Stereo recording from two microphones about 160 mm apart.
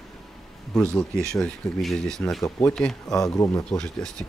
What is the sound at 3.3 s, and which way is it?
Speech, 20° left (ahead or behind).